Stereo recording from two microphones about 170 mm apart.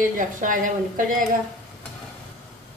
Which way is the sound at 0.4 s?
50° right (ahead or behind).